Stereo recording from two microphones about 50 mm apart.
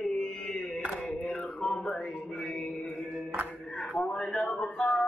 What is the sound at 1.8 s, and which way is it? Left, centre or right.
Music, left.